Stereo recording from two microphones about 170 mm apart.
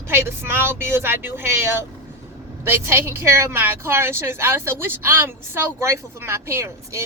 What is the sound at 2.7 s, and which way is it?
A woman's voice, 15° right (ahead or behind).